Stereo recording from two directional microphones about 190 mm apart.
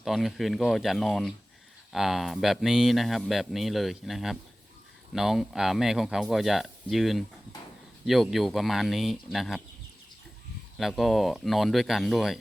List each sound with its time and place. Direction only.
0.0 s speech: centre (ahead or behind)
10.8 s speech: centre (ahead or behind)